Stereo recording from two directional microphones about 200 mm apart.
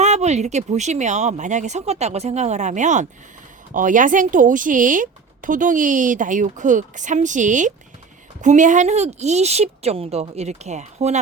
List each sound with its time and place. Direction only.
0.0 s speech: 35° right (ahead or behind)